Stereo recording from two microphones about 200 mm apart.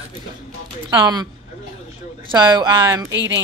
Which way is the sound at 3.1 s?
65° right (ahead or behind).